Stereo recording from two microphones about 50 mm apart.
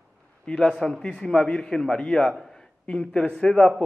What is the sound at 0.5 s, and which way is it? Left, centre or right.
A man's voice, centre.